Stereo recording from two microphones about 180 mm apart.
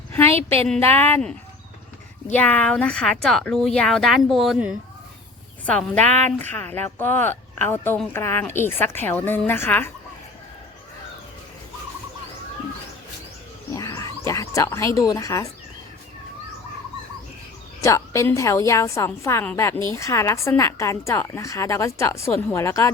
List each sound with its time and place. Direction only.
0.3 s a woman's voice: 35° right (ahead or behind)
0.7 s a woman's voice: 10° left (ahead or behind)
6.0 s a woman's voice: 40° right (ahead or behind)
6.4 s a woman's voice: 10° left (ahead or behind)
13.7 s wild animals: 20° left (ahead or behind)
17.7 s a woman's voice: 15° left (ahead or behind)